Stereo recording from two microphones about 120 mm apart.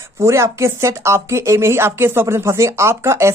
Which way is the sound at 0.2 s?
25° right (ahead or behind).